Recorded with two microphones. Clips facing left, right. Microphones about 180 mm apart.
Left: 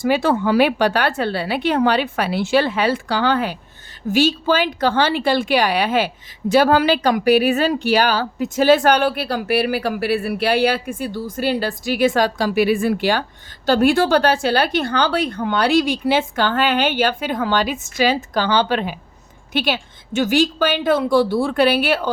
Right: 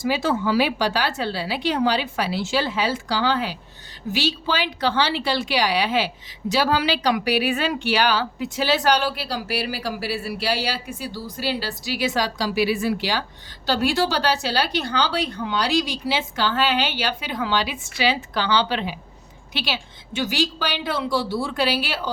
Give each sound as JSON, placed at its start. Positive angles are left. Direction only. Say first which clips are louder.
{"t": 0.0, "sound": "speech", "louder": "left 5 dB", "side_deg": 55}